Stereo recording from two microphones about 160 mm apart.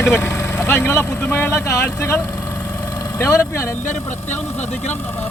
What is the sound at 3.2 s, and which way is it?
Speech, 15° left (ahead or behind).